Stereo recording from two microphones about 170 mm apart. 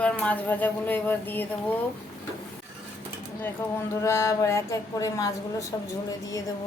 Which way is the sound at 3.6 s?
15° left (ahead or behind).